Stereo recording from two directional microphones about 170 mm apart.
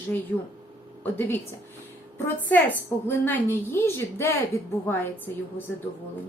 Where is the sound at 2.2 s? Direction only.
10° left (ahead or behind).